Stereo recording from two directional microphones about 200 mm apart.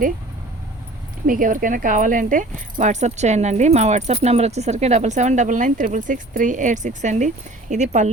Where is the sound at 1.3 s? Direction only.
45° right (ahead or behind).